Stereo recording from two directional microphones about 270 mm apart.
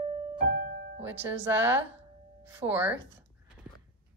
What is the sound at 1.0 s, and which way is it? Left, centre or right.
A woman's voice, centre.